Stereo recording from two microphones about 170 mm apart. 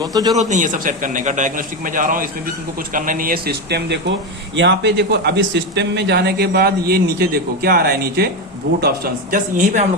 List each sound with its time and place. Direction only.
0.0 s a man's voice: 20° right (ahead or behind)
0.3 s a man's voice: 45° right (ahead or behind); by 4.0 s 80° right
4.5 s speech: 90° right; by 8.3 s 65° right (ahead or behind)
9.3 s a man's voice: 50° right (ahead or behind)